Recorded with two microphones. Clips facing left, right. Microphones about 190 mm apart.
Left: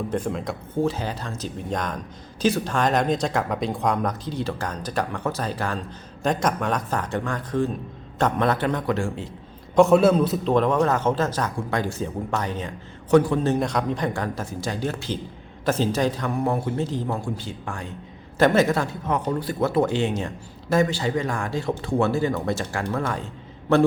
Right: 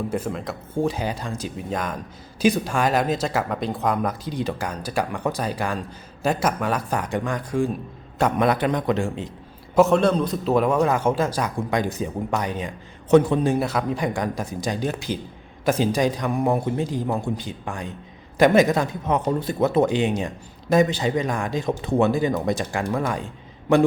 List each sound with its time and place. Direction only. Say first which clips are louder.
0.1 s a man's voice: left 1 dB; 5° right (ahead or behind)
0.8 s speech: right 1 dB; 15° right (ahead or behind)
9.7 s a man's voice: left 2 dB; centre (ahead or behind)
10.5 s speech: right 2 dB; 10° right (ahead or behind)